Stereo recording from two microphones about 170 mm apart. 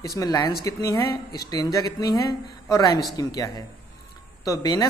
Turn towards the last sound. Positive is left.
turn(degrees=25)  # may be behind; listen again after turning